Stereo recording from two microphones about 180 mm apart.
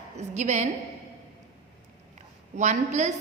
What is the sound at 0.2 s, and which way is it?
Speech, 40° right (ahead or behind).